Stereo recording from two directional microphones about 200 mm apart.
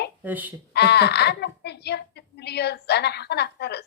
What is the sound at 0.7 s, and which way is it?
Speech, 55° left (ahead or behind).